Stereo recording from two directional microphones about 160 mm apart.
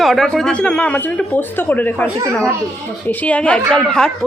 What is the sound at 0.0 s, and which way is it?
A child's voice, centre (ahead or behind).